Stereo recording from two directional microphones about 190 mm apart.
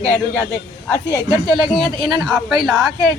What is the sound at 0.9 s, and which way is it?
Speech, 15° left (ahead or behind).